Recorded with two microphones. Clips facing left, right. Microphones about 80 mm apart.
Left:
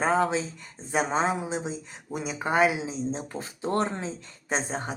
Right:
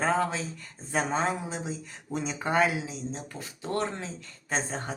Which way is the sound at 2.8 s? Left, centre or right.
Left.